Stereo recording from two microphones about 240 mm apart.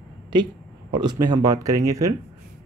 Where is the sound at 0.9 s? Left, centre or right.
Centre.